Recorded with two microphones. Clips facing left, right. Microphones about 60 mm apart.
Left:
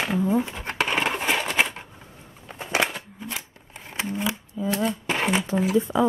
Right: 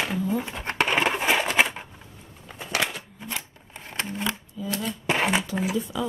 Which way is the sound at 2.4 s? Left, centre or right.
Left.